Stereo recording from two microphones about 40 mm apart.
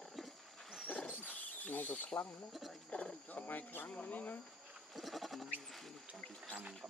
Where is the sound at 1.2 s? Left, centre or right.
Left.